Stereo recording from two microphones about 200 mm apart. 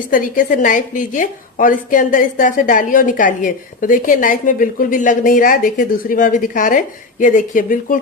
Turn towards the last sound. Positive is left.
turn(degrees=45)  # may be behind; listen again after turning